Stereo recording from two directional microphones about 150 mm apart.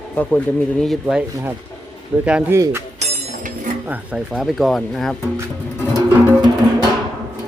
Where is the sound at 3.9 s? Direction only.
5° right (ahead or behind).